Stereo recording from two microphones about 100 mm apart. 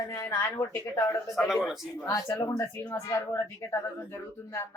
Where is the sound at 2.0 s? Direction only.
35° left (ahead or behind).